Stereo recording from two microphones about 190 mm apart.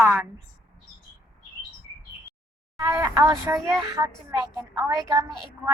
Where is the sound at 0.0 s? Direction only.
15° right (ahead or behind).